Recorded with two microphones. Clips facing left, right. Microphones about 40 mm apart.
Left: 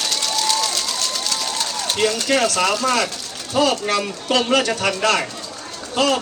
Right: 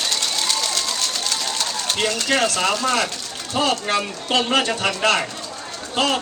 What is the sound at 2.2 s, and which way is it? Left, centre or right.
A man's voice, right.